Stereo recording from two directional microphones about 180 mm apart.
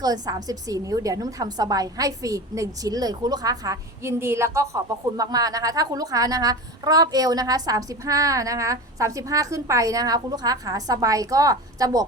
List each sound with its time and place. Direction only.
0.0 s a woman's voice: 20° right (ahead or behind)